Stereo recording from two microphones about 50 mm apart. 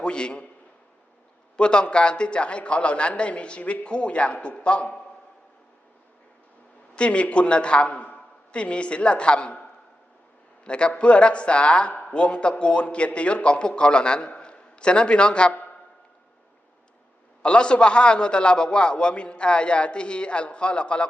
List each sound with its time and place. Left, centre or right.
0.0 s a man's voice: centre
1.5 s a man's voice: centre
6.9 s a man's voice: left
10.7 s a man's voice: left
17.4 s a man's voice: centre